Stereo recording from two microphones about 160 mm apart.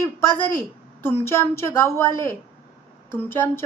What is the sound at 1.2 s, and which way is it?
Speech, 15° left (ahead or behind).